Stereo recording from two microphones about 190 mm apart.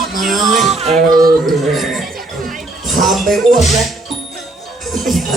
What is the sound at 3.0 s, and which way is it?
Speech, centre (ahead or behind).